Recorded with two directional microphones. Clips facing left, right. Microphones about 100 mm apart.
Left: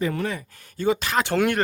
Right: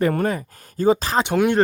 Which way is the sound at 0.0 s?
50° right (ahead or behind).